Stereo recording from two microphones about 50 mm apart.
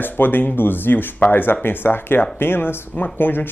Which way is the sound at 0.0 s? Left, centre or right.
Left.